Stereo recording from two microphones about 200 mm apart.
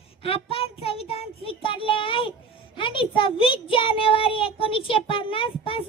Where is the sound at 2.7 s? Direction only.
25° left (ahead or behind).